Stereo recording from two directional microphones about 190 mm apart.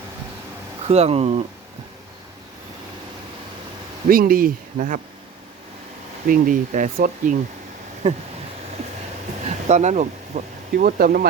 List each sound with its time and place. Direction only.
0.9 s speech: 35° right (ahead or behind)
4.1 s speech: 50° right (ahead or behind)
6.2 s speech: 45° right (ahead or behind)
9.6 s speech: 35° right (ahead or behind)
10.8 s speech: 50° right (ahead or behind)